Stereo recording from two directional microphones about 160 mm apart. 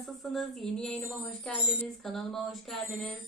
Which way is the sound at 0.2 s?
Centre (ahead or behind).